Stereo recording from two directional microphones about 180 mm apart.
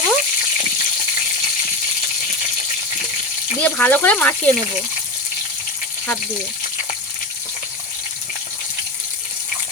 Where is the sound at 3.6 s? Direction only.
10° left (ahead or behind).